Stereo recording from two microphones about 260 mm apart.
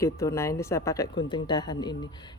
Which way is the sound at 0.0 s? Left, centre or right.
Centre.